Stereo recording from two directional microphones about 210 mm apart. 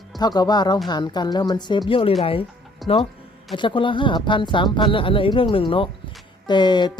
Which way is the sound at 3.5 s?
25° left (ahead or behind).